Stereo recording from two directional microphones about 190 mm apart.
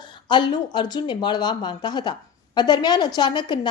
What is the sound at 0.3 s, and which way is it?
A woman's voice, 25° left (ahead or behind).